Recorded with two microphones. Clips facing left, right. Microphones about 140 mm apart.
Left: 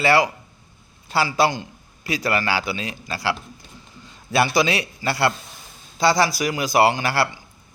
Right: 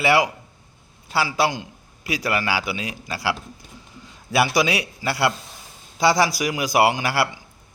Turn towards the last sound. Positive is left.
turn(degrees=-10)  # may be behind; listen again after turning